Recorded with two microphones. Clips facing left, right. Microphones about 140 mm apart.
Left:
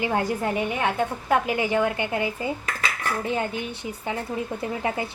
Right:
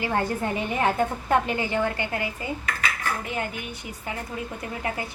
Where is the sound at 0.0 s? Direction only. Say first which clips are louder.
Left 1 dB; 10° left (ahead or behind).